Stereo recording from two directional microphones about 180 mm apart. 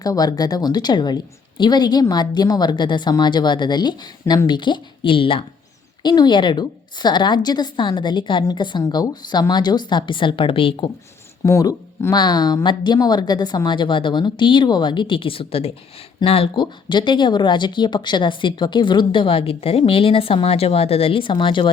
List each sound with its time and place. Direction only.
0.0 s speech: 20° left (ahead or behind)
11.4 s speech: 15° left (ahead or behind)